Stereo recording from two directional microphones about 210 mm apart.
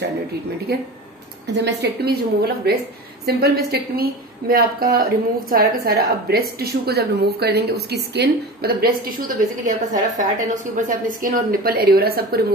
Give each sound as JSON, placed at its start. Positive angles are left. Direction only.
{"t": 1.5, "sound": "a woman's voice", "side_deg": -55}